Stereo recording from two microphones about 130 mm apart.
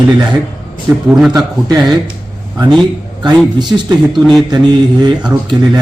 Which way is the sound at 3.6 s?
35° right (ahead or behind).